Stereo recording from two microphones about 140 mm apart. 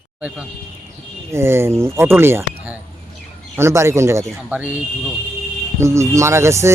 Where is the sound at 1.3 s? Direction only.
20° right (ahead or behind).